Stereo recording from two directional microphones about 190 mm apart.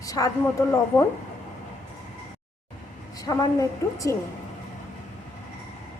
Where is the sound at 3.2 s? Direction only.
20° left (ahead or behind).